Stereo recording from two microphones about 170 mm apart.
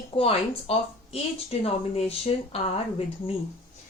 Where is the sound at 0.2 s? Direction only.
35° left (ahead or behind).